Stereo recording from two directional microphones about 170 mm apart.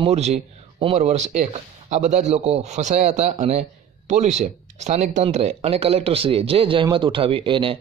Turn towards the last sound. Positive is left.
turn(degrees=-30)  # may be behind; listen again after turning